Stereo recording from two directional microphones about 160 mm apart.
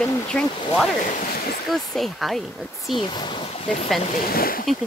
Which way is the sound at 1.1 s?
65° left (ahead or behind).